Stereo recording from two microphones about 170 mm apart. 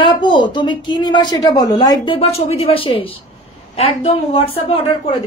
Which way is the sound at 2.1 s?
35° left (ahead or behind).